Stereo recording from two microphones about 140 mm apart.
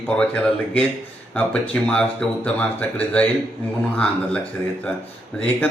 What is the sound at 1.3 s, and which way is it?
A man's voice, 10° left (ahead or behind).